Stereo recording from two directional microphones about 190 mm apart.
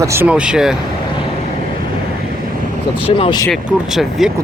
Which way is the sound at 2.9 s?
30° left (ahead or behind).